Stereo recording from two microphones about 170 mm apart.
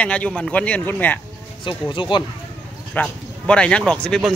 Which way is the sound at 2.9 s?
5° left (ahead or behind).